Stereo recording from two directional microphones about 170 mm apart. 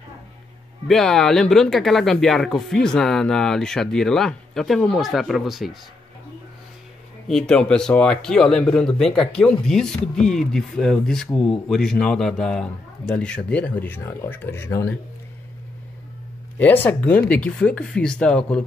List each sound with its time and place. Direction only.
0.8 s speech: 5° left (ahead or behind)
7.2 s a man's voice: 5° left (ahead or behind)
16.5 s a man's voice: 10° left (ahead or behind)